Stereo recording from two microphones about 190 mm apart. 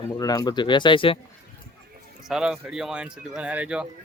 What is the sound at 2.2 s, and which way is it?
Speech, 5° right (ahead or behind).